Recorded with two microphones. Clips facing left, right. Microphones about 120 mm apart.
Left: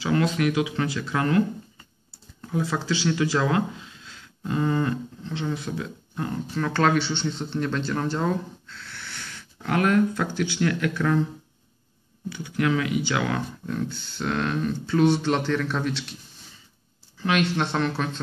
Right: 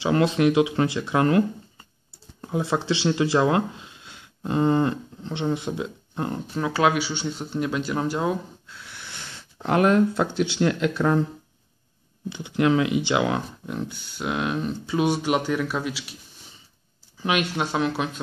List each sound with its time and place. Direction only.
0.0 s speech: 25° right (ahead or behind)
6.5 s speech: 10° right (ahead or behind)
12.3 s speech: 20° right (ahead or behind); by 16.2 s 5° right (ahead or behind)
17.2 s speech: 15° right (ahead or behind)